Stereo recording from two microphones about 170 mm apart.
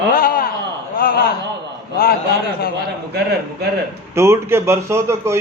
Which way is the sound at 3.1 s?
70° right (ahead or behind).